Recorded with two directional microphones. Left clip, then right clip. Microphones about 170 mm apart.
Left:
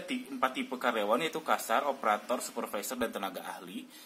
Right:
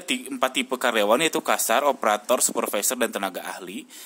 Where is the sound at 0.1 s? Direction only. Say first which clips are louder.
Right 9 dB; 50° right (ahead or behind).